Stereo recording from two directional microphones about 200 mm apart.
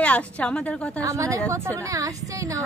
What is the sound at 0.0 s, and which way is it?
A woman's voice, 5° left (ahead or behind).